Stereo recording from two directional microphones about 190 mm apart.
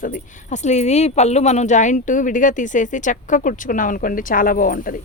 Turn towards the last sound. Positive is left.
turn(degrees=45)  # may be behind; listen again after turning